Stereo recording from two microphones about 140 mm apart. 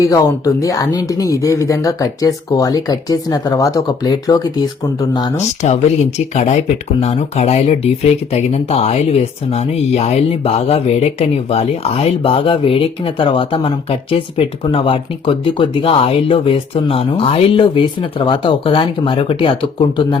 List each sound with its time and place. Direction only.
0.0 s speech: 25° left (ahead or behind)
5.6 s speech: 55° left (ahead or behind)